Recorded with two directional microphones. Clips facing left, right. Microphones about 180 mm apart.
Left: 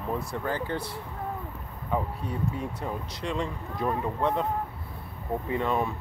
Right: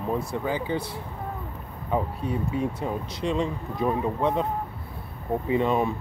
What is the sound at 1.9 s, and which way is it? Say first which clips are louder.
Speech: right 4 dB; 20° right (ahead or behind).